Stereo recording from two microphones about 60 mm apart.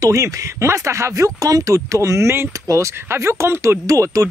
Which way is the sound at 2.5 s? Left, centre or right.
Right.